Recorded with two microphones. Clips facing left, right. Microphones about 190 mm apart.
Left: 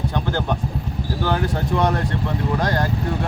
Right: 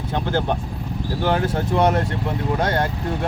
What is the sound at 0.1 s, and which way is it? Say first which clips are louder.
Speech: right 1 dB; 25° right (ahead or behind).